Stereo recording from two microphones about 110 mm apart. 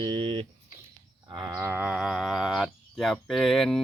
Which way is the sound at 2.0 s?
Centre (ahead or behind).